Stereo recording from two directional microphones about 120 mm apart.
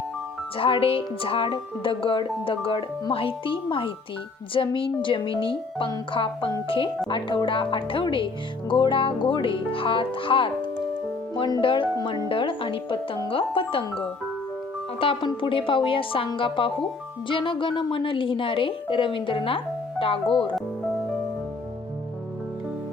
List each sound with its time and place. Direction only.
0.5 s speech: 50° left (ahead or behind)